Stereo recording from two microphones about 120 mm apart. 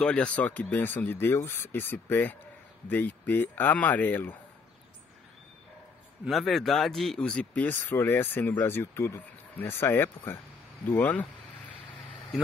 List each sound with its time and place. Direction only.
0.0 s speech: 10° left (ahead or behind)
6.2 s speech: centre (ahead or behind)